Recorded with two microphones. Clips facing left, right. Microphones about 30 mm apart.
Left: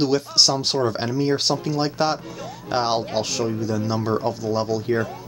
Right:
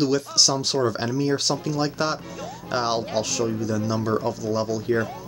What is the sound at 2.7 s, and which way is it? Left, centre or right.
Speech, left.